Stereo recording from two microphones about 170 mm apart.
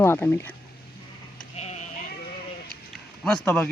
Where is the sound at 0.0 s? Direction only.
15° left (ahead or behind).